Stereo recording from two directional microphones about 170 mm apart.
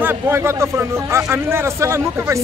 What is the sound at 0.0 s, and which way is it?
Speech, 15° right (ahead or behind).